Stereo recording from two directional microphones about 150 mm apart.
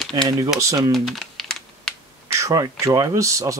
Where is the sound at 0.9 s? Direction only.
Centre (ahead or behind).